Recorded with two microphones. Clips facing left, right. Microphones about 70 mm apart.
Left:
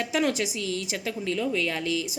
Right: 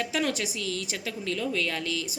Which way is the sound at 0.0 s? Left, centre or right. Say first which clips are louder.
Left 3 dB; left.